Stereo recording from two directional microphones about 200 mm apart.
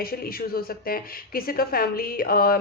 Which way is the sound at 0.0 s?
50° left (ahead or behind).